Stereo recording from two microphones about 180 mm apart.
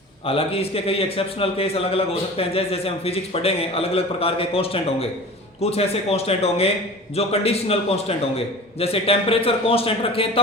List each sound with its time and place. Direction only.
0.3 s a man's voice: 30° left (ahead or behind)